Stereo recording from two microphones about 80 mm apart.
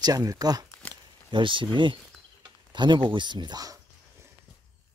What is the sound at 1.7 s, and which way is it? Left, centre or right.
Speech, right.